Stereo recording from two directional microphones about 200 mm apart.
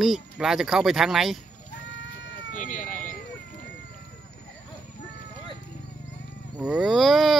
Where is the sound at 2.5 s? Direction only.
40° left (ahead or behind).